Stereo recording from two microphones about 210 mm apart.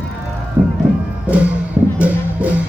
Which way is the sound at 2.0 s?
5° right (ahead or behind).